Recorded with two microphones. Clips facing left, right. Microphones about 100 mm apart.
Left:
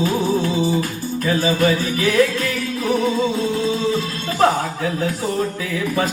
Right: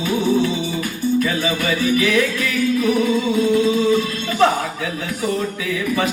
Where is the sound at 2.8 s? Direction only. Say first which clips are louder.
Left 3 dB; 30° left (ahead or behind).